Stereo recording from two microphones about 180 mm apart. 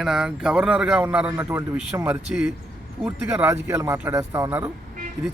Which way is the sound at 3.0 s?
10° right (ahead or behind).